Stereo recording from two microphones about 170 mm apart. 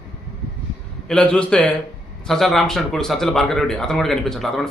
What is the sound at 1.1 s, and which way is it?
Speech, 5° left (ahead or behind).